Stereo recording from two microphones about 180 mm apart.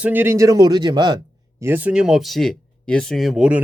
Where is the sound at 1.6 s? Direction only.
10° right (ahead or behind).